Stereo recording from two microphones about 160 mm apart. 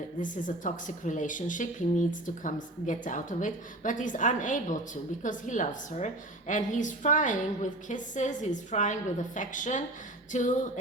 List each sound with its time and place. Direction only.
0.2 s a woman's voice: 55° left (ahead or behind)